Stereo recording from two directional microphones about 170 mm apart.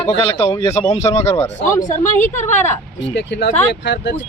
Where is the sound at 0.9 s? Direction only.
40° left (ahead or behind).